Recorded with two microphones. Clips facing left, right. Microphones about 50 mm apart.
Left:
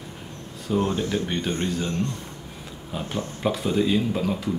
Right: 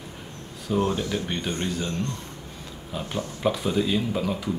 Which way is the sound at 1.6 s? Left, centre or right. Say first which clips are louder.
Left 2 dB; centre.